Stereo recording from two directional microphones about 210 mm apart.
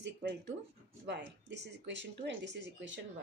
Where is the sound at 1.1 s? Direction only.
55° right (ahead or behind).